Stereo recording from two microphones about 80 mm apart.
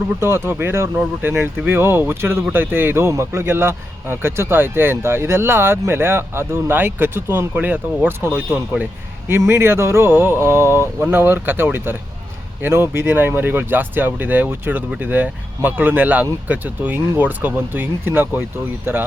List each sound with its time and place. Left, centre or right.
0.2 s speech: right